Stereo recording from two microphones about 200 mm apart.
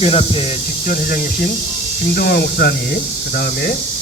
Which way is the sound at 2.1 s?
55° left (ahead or behind).